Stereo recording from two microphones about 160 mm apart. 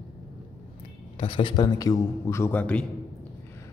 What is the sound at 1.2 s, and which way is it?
A man's voice, 30° left (ahead or behind).